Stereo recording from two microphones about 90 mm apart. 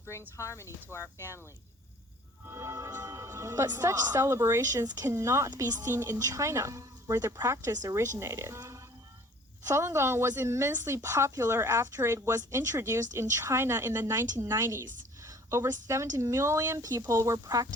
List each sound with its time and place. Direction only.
0.1 s speech: 30° left (ahead or behind)
2.5 s a woman's voice: 35° right (ahead or behind)